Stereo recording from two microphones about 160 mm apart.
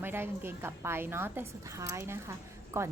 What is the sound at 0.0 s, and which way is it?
A woman's voice, 15° right (ahead or behind).